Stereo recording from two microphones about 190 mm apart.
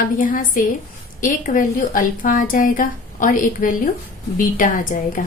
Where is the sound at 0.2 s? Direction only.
45° left (ahead or behind).